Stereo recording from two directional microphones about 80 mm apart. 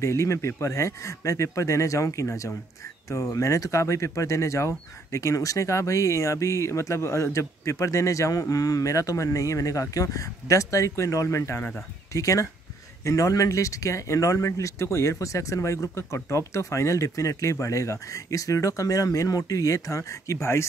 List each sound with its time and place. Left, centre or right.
0.0 s speech: left